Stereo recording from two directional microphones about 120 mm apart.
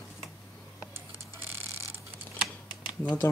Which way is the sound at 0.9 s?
20° right (ahead or behind).